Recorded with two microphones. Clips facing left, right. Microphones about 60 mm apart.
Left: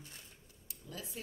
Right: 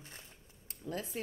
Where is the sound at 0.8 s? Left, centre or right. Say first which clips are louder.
Right 7 dB; right.